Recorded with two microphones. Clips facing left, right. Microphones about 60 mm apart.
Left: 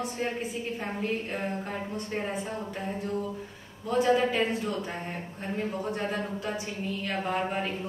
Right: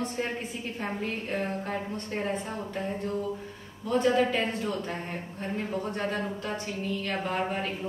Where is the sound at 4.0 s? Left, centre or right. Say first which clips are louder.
Left 1 dB; centre.